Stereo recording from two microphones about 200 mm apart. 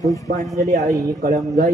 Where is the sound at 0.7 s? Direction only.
45° right (ahead or behind).